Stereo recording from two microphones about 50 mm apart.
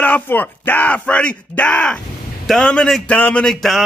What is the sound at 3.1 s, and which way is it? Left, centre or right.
Speech, left.